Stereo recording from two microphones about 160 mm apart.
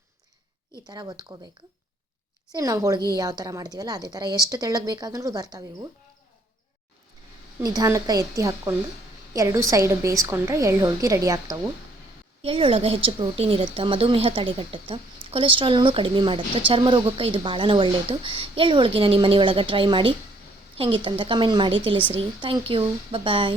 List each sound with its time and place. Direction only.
0.9 s a woman's voice: 25° right (ahead or behind)
2.5 s a woman's voice: 20° right (ahead or behind)
7.6 s a woman's voice: 25° right (ahead or behind)
12.4 s speech: 35° right (ahead or behind)